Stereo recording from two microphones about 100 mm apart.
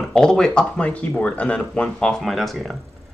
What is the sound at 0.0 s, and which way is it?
Speech, 5° left (ahead or behind).